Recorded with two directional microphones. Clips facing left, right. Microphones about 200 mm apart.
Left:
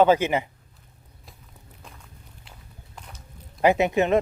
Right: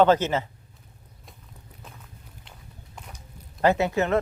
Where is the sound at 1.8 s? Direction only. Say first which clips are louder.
Right 1 dB; centre (ahead or behind).